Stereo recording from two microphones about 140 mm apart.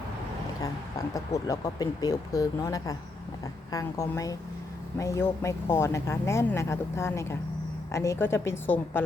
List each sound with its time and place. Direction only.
0.6 s a woman's voice: 25° left (ahead or behind)